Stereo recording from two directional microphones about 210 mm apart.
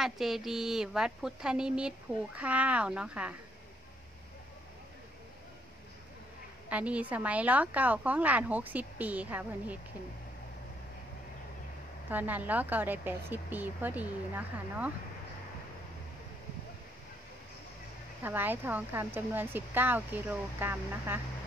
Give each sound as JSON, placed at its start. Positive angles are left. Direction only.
{"t": 0.0, "sound": "a woman's voice", "side_deg": 0}
{"t": 6.7, "sound": "a woman's voice", "side_deg": -5}
{"t": 12.1, "sound": "a woman's voice", "side_deg": -10}
{"t": 18.2, "sound": "a woman's voice", "side_deg": -10}